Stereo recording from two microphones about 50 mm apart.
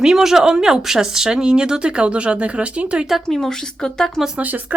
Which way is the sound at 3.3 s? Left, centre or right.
Centre.